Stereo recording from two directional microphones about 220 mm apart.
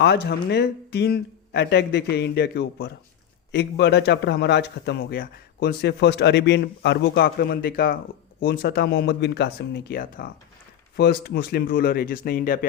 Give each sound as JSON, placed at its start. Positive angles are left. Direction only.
{"t": 0.0, "sound": "speech", "side_deg": 50}